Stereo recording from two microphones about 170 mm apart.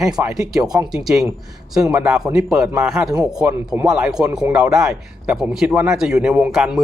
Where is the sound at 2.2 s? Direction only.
5° right (ahead or behind).